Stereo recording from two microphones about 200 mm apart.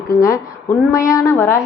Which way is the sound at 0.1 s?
15° left (ahead or behind).